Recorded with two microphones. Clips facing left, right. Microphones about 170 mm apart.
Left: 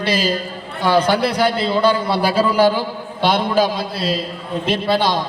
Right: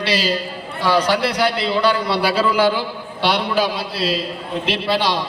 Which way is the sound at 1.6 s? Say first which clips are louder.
Left 2 dB; 45° left (ahead or behind).